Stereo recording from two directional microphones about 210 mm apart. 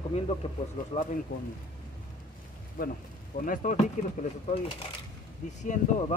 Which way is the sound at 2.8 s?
45° left (ahead or behind).